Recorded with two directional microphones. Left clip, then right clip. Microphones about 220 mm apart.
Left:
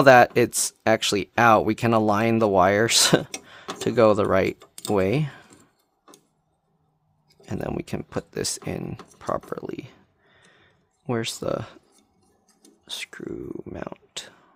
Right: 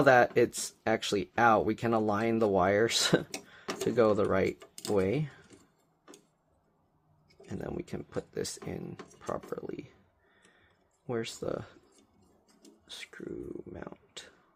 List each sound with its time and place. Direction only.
0.0 s speech: 40° left (ahead or behind)
3.4 s tick-tock: 40° left (ahead or behind)
3.8 s speech: 40° left (ahead or behind)
7.3 s speech: 40° left (ahead or behind)
9.5 s a sound: 40° left (ahead or behind)
12.8 s speech: 40° left (ahead or behind)